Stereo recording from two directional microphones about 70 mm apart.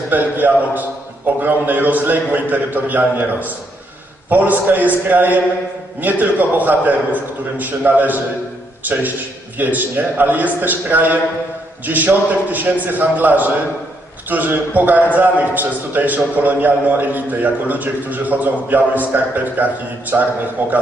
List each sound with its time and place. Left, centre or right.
0.1 s a man's voice: right